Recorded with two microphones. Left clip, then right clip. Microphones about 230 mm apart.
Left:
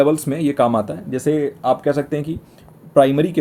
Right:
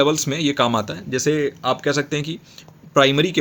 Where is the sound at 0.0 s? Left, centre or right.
Right.